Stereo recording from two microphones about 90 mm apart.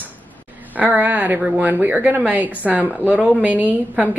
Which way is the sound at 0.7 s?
20° right (ahead or behind).